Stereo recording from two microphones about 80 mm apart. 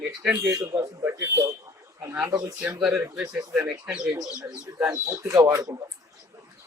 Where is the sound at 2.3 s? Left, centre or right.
Right.